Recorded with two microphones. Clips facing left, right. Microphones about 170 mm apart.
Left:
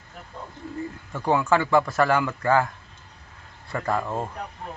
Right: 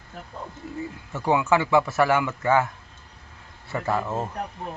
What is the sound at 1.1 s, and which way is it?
Speech, 5° right (ahead or behind).